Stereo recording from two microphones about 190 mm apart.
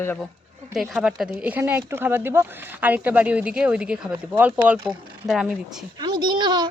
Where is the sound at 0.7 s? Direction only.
5° right (ahead or behind).